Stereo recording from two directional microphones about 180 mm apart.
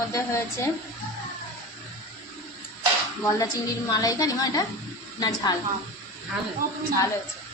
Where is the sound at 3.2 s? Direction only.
20° left (ahead or behind).